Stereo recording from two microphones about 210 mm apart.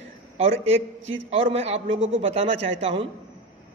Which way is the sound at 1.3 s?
30° right (ahead or behind).